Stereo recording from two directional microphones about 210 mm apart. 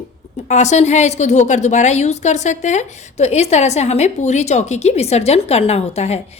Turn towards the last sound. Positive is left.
turn(degrees=30)  # may be behind; listen again after turning